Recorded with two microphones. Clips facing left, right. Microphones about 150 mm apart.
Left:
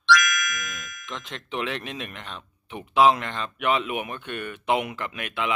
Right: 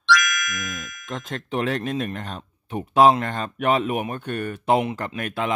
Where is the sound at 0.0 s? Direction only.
Centre (ahead or behind).